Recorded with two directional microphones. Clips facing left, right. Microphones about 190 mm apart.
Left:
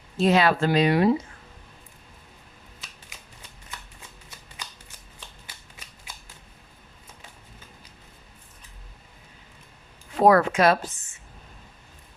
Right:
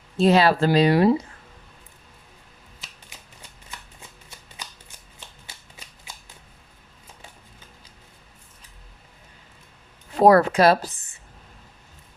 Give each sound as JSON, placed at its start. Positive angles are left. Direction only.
{"t": 0.2, "sound": "speech", "side_deg": -35}
{"t": 10.2, "sound": "speech", "side_deg": -35}